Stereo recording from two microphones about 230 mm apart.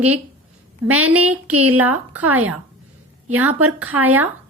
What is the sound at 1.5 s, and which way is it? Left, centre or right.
Speech, right.